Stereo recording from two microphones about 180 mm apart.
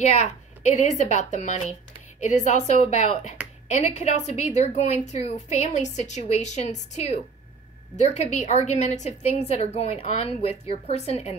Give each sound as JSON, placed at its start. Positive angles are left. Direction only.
{"t": 0.0, "sound": "a woman's voice", "side_deg": 40}